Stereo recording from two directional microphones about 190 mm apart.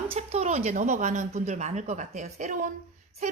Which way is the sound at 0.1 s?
35° right (ahead or behind).